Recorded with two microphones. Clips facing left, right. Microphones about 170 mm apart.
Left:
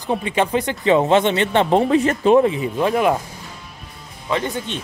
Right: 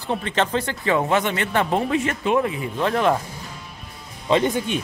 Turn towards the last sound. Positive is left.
turn(degrees=-10)  # may be behind; listen again after turning